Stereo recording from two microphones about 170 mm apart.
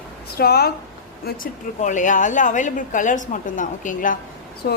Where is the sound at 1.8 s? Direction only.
45° left (ahead or behind).